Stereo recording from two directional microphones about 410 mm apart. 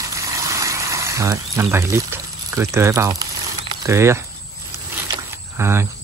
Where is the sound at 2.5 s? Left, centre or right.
Centre.